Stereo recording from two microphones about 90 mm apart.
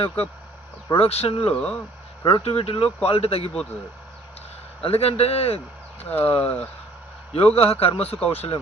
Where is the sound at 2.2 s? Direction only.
85° left.